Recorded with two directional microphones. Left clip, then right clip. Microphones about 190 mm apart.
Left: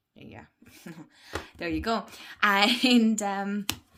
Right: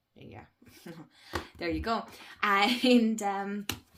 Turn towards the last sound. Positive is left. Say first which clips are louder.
# left 3 dB
turn(degrees=40)  # may be behind; listen again after turning